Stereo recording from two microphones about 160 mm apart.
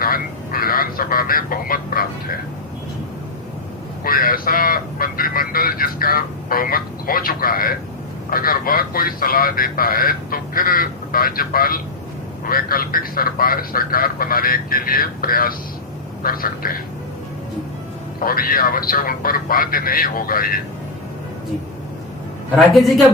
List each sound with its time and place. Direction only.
0.0 s vehicle: 65° left (ahead or behind)
4.0 s vehicle: 65° left (ahead or behind)
8.3 s a man's voice: 65° left (ahead or behind)
18.2 s a man's voice: 65° left (ahead or behind)
22.5 s a man's voice: centre (ahead or behind)